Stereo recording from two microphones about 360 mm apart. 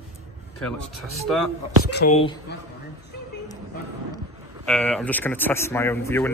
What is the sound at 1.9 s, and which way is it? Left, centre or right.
Speech, left.